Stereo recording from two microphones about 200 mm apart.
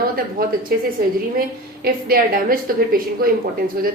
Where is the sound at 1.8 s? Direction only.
45° right (ahead or behind).